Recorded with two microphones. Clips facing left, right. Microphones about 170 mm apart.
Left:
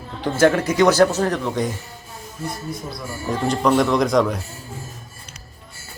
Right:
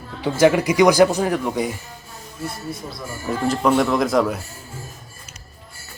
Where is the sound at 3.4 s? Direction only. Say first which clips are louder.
Even; 5° right (ahead or behind).